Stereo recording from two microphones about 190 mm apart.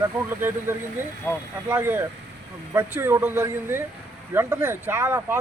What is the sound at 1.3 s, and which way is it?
Speech, 10° left (ahead or behind).